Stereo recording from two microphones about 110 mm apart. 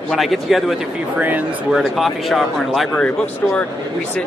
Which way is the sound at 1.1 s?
15° right (ahead or behind).